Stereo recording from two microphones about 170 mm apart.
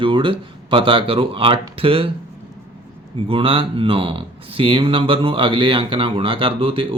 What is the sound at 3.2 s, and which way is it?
Speech, 30° right (ahead or behind).